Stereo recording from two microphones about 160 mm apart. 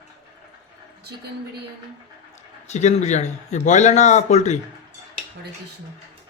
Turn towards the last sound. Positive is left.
turn(degrees=45)  # may be behind; listen again after turning